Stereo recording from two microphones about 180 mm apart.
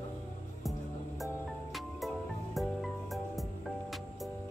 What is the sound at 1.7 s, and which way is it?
Music, centre (ahead or behind).